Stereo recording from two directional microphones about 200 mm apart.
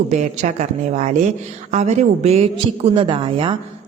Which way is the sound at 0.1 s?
35° right (ahead or behind).